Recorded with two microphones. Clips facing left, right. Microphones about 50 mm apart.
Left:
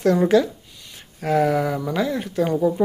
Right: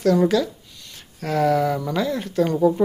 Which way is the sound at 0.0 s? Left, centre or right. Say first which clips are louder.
Left 1 dB; left.